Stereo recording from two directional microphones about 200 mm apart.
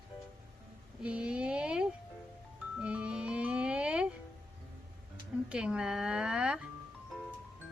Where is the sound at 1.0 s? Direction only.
5° right (ahead or behind).